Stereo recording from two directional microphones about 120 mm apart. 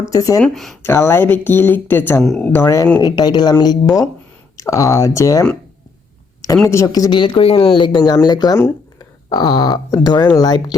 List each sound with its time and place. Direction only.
0.0 s speech: 30° left (ahead or behind)
0.4 s speech: centre (ahead or behind)
0.8 s speech: 20° left (ahead or behind)
2.2 s speech: centre (ahead or behind)
2.5 s speech: 20° left (ahead or behind)
3.0 s speech: 35° left (ahead or behind)
6.7 s speech: 25° left (ahead or behind)
7.1 s speech: 40° left (ahead or behind)
7.4 s speech: 55° left (ahead or behind)
7.8 s speech: 35° left (ahead or behind)
8.5 s a sound: 20° left (ahead or behind)
9.3 s speech: 35° left (ahead or behind)